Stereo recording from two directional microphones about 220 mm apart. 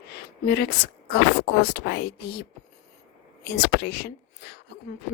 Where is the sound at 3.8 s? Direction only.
45° left (ahead or behind).